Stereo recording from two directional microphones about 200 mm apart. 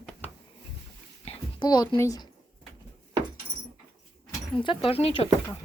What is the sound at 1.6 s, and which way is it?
Speech, 20° left (ahead or behind).